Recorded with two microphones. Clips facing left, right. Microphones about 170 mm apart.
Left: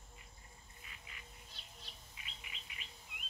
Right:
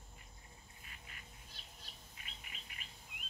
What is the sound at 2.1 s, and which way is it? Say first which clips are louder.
Bird: even; 45° right (ahead or behind).